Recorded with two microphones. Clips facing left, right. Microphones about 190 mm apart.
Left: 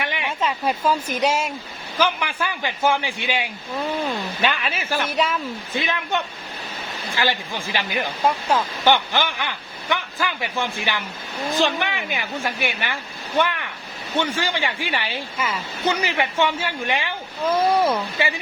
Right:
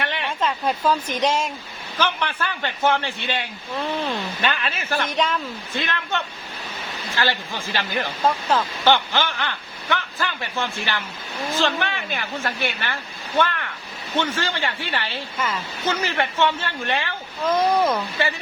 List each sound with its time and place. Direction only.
0.0 s a woman's voice: 10° left (ahead or behind)
7.2 s a woman's voice: 15° left (ahead or behind)
14.2 s a woman's voice: 15° left (ahead or behind)